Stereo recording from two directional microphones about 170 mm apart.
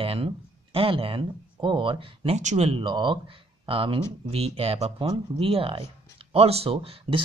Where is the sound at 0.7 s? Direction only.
35° right (ahead or behind).